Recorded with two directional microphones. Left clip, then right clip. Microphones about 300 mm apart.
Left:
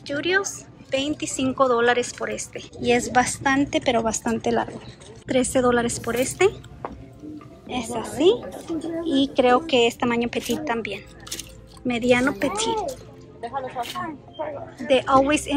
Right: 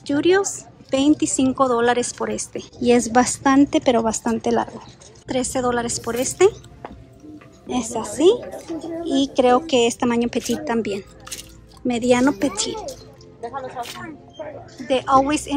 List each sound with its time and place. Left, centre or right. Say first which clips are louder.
0.0 s a woman's voice: right 5 dB; centre
7.6 s a woman's voice: right 3 dB; centre
13.4 s music: even; centre
14.9 s a woman's voice: right 1 dB; centre